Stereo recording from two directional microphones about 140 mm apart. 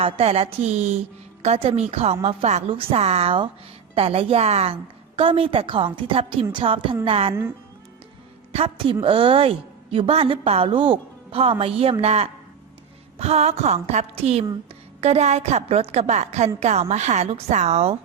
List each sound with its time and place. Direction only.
0.0 s a woman's voice: 45° right (ahead or behind)
8.5 s a woman's voice: 40° right (ahead or behind)